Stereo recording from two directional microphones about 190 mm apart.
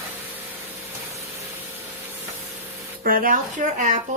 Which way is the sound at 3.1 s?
50° right (ahead or behind).